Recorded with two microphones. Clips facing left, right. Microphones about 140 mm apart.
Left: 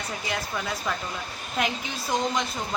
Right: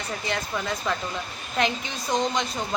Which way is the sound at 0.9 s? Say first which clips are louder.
Right 2 dB; 5° left (ahead or behind).